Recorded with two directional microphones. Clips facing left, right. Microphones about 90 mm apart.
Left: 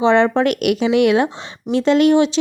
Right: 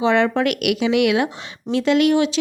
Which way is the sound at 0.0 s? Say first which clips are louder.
Left 3 dB; 30° left (ahead or behind).